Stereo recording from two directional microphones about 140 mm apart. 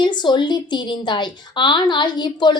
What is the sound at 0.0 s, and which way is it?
A woman's voice, 35° left (ahead or behind).